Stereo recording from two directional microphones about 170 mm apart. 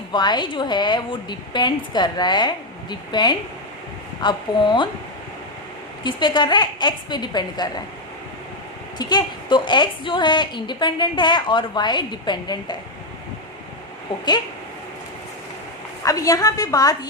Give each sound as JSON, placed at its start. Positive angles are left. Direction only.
{"t": 0.1, "sound": "a woman's voice", "side_deg": 25}
{"t": 6.0, "sound": "a woman's voice", "side_deg": 25}
{"t": 9.0, "sound": "a woman's voice", "side_deg": 25}
{"t": 16.0, "sound": "a woman's voice", "side_deg": 20}